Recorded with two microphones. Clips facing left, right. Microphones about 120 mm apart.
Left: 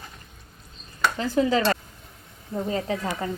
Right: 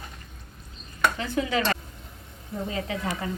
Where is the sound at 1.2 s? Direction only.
35° left (ahead or behind).